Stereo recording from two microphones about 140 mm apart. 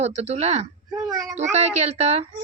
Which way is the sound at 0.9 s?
5° right (ahead or behind).